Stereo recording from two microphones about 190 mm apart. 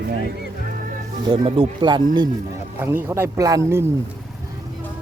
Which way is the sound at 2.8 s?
10° right (ahead or behind).